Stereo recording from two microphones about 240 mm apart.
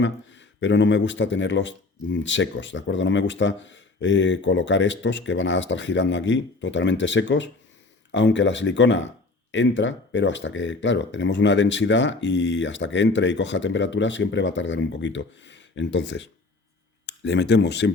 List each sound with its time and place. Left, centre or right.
0.0 s speech: left